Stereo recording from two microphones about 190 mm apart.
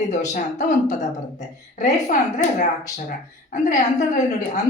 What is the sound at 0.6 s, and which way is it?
A woman's voice, 40° left (ahead or behind).